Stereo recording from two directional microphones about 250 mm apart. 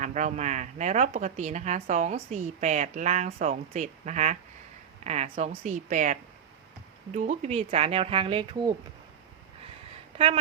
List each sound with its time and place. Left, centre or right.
0.0 s a woman's voice: right
10.2 s a woman's voice: right